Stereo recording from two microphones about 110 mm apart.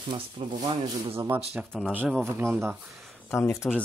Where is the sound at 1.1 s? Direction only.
20° right (ahead or behind).